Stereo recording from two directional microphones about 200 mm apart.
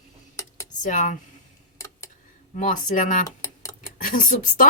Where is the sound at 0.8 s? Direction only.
40° left (ahead or behind).